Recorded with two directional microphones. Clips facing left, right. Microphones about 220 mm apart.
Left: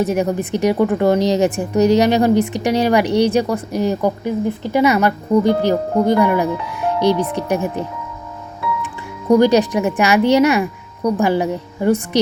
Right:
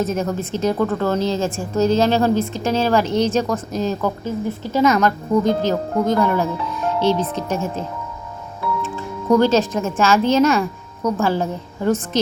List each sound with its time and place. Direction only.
0.0 s a woman's voice: 15° left (ahead or behind)